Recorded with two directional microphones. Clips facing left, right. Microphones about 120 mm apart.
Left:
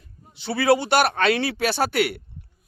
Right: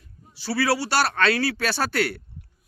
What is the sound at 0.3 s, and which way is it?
A woman's voice, 20° left (ahead or behind).